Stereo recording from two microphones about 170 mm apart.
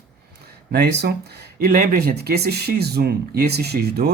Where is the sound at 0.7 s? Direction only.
75° right (ahead or behind).